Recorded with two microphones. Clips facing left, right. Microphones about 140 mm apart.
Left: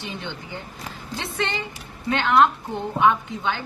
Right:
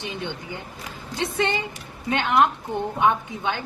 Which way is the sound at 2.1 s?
20° right (ahead or behind).